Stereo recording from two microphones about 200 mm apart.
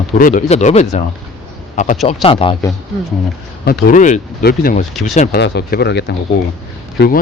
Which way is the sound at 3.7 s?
40° left (ahead or behind).